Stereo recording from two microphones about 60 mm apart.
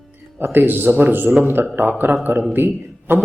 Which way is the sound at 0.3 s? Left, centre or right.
Right.